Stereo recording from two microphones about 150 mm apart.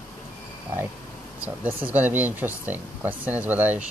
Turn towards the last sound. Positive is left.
turn(degrees=-10)  # may be behind; listen again after turning